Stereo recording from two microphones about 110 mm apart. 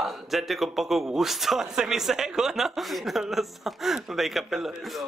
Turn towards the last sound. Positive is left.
turn(degrees=0)  # may be behind; listen again after turning